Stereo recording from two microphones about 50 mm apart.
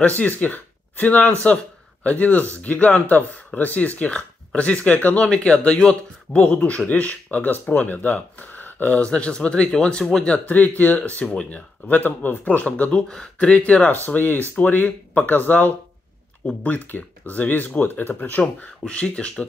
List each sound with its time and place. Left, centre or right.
0.2 s speech: left
5.2 s speech: left
10.8 s speech: left
13.1 s speech: centre
13.5 s speech: left
14.0 s speech: left
18.9 s speech: left